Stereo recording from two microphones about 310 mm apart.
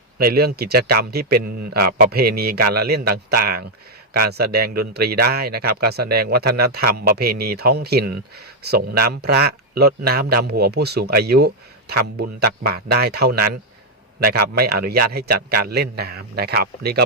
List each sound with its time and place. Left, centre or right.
0.2 s a man's voice: right